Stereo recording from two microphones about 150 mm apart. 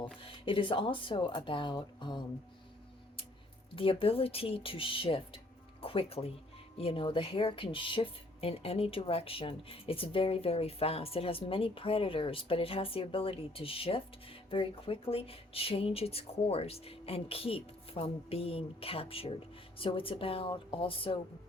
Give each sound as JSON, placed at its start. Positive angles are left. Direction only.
{"t": 0.2, "sound": "speech", "side_deg": 35}
{"t": 3.8, "sound": "speech", "side_deg": 35}